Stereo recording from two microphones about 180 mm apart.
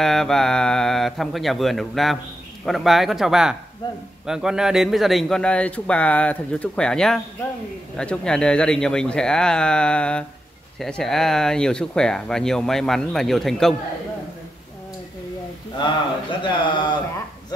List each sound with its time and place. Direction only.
0.0 s speech: centre (ahead or behind)
15.8 s speech: 25° left (ahead or behind)